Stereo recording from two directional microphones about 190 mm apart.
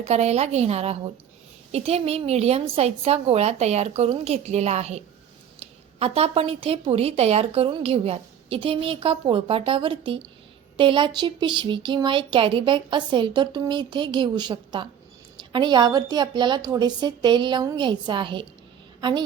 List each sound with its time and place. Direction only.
0.0 s a woman's voice: 35° right (ahead or behind)